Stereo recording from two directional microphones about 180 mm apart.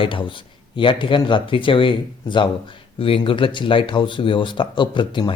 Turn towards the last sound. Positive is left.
turn(degrees=25)  # may be behind; listen again after turning